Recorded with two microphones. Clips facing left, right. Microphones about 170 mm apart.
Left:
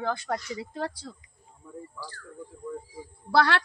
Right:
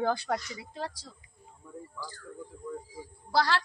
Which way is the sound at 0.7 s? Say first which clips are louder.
Left 2 dB; 60° left (ahead or behind).